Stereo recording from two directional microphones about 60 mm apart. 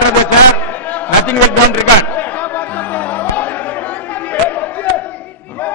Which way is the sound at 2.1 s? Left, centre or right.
Left.